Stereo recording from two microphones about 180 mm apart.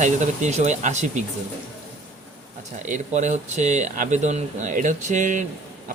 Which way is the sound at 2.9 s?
45° right (ahead or behind).